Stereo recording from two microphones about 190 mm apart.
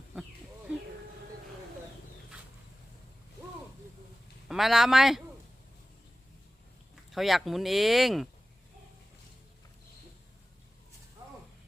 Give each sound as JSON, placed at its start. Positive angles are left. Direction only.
{"t": 4.4, "sound": "a man's voice", "side_deg": 0}
{"t": 7.1, "sound": "speech", "side_deg": 0}